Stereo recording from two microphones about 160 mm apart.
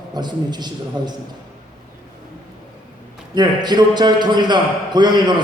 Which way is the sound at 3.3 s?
25° right (ahead or behind).